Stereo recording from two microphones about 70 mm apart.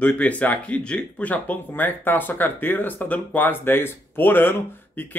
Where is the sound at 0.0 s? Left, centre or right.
Left.